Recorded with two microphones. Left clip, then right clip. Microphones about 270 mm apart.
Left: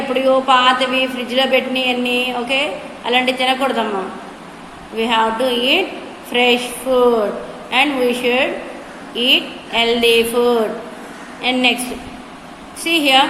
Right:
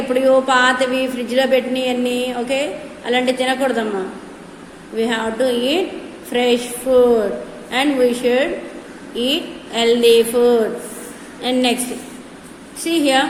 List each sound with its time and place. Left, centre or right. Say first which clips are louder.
0.1 s a woman's voice: even; right
4.9 s a woman's voice: left 3 dB; centre
12.8 s speech: left 3 dB; centre